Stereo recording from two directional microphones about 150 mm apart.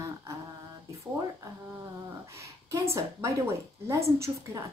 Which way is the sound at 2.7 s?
20° right (ahead or behind).